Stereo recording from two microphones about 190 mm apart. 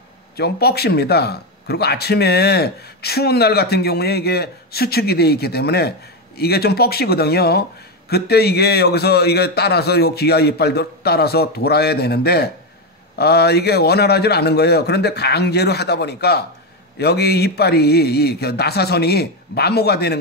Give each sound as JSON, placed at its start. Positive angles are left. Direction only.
{"t": 0.4, "sound": "speech", "side_deg": 55}